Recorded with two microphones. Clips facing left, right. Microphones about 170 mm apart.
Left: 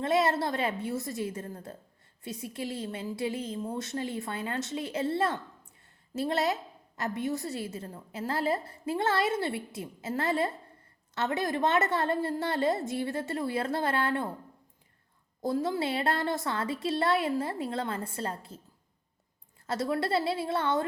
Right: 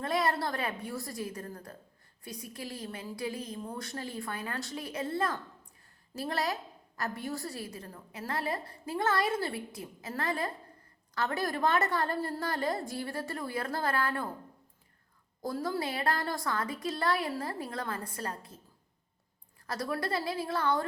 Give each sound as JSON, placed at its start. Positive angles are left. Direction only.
{"t": 0.0, "sound": "a woman's voice", "side_deg": 25}
{"t": 15.4, "sound": "a woman's voice", "side_deg": 25}
{"t": 19.6, "sound": "a woman's voice", "side_deg": 25}